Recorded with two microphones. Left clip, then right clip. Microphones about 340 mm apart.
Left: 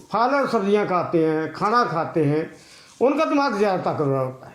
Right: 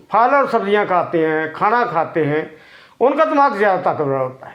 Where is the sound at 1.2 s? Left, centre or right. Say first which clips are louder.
Right 5 dB; right.